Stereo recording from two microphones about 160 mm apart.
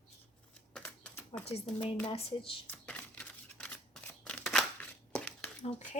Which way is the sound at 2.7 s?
10° left (ahead or behind).